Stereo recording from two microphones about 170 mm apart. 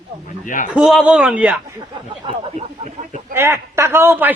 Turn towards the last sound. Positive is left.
turn(degrees=-10)  # may be behind; listen again after turning